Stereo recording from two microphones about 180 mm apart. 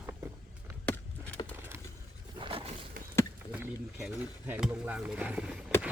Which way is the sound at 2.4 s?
30° right (ahead or behind).